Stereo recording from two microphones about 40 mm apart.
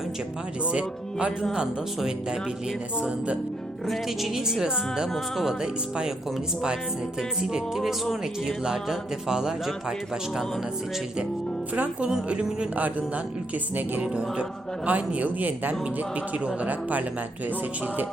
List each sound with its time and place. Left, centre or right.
0.6 s speech: right
3.8 s music: centre
8.4 s speech: centre
11.7 s speech: right
14.0 s speech: right
14.8 s a man's voice: right